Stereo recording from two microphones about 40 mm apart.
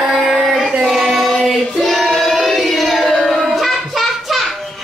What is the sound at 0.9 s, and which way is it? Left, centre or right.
Child singing, centre.